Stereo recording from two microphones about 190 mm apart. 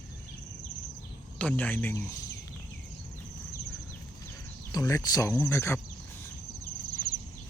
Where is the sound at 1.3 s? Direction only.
5° left (ahead or behind).